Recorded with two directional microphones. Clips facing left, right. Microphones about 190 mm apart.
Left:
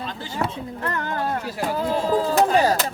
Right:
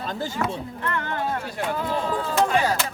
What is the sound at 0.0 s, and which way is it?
Chop, 45° right (ahead or behind).